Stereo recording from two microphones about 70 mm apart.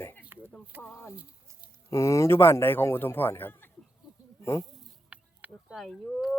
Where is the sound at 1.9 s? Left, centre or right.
Left.